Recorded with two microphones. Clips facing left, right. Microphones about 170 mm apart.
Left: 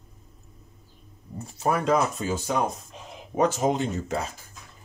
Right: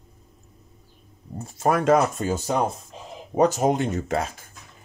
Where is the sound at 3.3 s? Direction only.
45° right (ahead or behind); by 4.2 s 70° right (ahead or behind).